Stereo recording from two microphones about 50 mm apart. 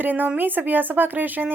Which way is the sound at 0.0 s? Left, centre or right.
Right.